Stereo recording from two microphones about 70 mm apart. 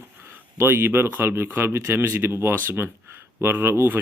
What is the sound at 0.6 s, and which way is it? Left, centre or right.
Speech, right.